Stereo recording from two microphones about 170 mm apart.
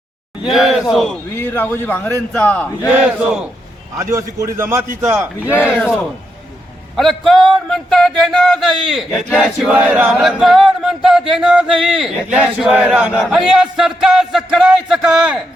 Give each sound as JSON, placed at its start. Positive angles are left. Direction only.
{"t": 0.5, "sound": "a man's voice", "side_deg": 0}
{"t": 4.1, "sound": "a man's voice", "side_deg": -20}
{"t": 5.6, "sound": "a man's voice", "side_deg": 10}
{"t": 6.9, "sound": "music", "side_deg": 0}